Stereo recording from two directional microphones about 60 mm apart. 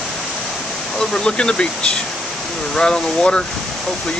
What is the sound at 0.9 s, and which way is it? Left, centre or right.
Speech, centre.